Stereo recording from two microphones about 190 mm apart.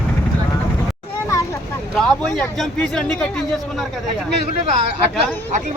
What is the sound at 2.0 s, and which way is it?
Speech, 5° left (ahead or behind).